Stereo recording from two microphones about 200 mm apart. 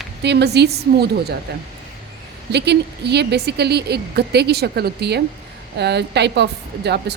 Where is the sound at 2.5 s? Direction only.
55° right (ahead or behind).